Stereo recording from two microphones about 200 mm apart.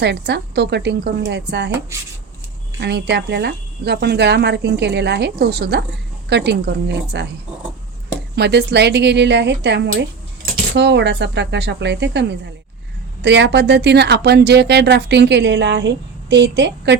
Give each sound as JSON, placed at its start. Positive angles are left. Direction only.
{"t": 0.0, "sound": "speech", "side_deg": -60}
{"t": 2.8, "sound": "speech", "side_deg": -55}
{"t": 8.4, "sound": "speech", "side_deg": -55}
{"t": 13.2, "sound": "speech", "side_deg": -60}